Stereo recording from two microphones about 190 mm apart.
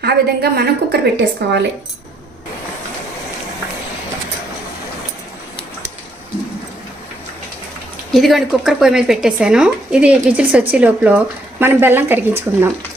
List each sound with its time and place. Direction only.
0.0 s a woman's voice: 55° right (ahead or behind)
8.1 s a woman's voice: centre (ahead or behind)